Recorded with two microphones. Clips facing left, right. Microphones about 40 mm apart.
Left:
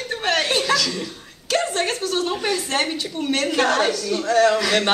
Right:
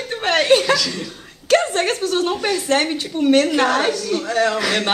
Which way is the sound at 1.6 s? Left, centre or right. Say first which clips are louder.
Right 3 dB; right.